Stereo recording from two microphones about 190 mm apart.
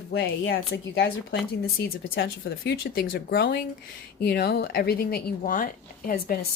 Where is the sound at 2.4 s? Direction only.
55° left (ahead or behind).